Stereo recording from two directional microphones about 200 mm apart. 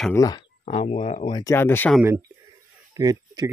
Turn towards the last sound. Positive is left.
turn(degrees=-20)  # may be behind; listen again after turning